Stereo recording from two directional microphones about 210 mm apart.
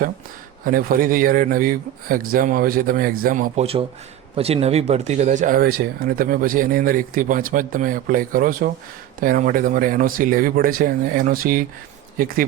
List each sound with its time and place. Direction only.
0.6 s speech: 40° right (ahead or behind)